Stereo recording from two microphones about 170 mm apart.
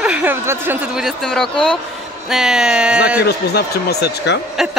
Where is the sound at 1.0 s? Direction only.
Centre (ahead or behind).